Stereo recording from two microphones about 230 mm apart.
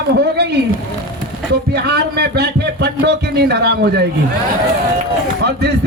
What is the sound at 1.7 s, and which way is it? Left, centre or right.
A man's voice, right.